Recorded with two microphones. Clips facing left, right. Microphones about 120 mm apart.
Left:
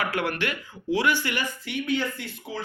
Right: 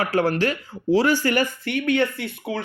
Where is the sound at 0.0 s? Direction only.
35° right (ahead or behind).